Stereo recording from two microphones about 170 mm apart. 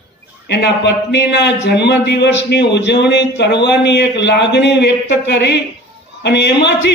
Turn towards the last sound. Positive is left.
turn(degrees=85)